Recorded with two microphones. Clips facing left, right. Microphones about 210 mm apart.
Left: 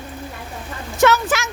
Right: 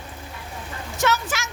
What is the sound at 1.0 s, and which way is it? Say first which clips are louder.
Speech: left 8 dB; 65° left (ahead or behind).